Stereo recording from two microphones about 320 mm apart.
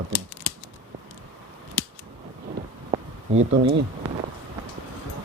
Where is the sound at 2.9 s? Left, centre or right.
Right.